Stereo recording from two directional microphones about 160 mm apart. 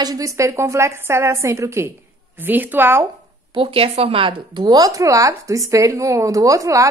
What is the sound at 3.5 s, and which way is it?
Speech, 35° right (ahead or behind).